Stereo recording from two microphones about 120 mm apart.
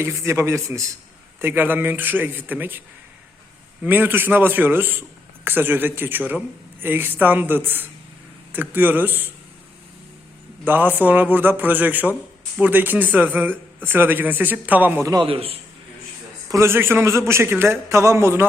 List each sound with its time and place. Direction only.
0.0 s a man's voice: 25° right (ahead or behind)
3.8 s a man's voice: 15° right (ahead or behind)
10.7 s a man's voice: 15° right (ahead or behind)
15.1 s a man's voice: 45° right (ahead or behind)
16.5 s a man's voice: 20° right (ahead or behind)